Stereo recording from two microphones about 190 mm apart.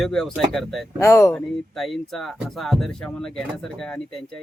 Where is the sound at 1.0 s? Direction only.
15° left (ahead or behind).